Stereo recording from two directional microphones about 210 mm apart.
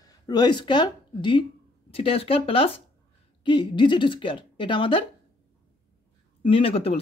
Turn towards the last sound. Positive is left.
turn(degrees=25)  # may be behind; listen again after turning